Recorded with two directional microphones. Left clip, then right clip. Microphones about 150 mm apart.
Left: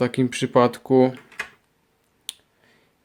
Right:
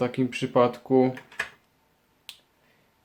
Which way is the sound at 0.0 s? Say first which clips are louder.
Left 4 dB; 65° left (ahead or behind).